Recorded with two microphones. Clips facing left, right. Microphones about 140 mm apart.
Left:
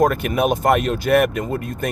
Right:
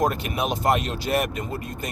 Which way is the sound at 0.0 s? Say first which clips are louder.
Left 7 dB; 55° left (ahead or behind).